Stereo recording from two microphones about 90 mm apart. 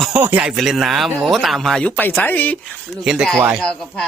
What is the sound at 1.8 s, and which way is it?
Speech, 15° left (ahead or behind).